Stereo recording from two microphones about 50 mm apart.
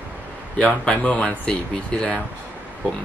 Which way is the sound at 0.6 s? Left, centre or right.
Left.